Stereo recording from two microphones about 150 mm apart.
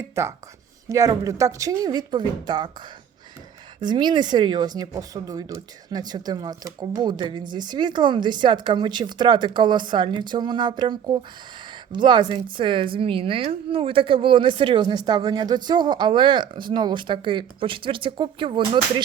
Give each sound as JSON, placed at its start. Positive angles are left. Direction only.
{"t": 0.2, "sound": "a woman's voice", "side_deg": -20}
{"t": 3.8, "sound": "speech", "side_deg": -30}